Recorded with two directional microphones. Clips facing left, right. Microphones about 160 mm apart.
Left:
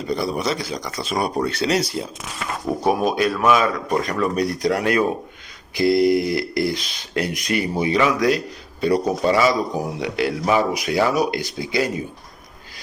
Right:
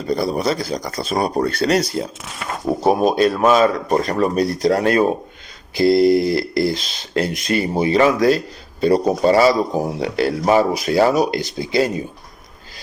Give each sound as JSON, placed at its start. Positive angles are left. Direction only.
{"t": 0.1, "sound": "speech", "side_deg": -35}
{"t": 1.5, "sound": "speech", "side_deg": -50}
{"t": 2.6, "sound": "speech", "side_deg": -25}